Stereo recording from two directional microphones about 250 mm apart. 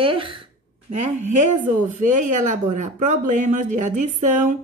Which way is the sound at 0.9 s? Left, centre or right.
Right.